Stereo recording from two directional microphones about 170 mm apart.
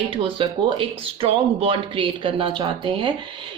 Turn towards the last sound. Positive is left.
turn(degrees=-30)  # may be behind; listen again after turning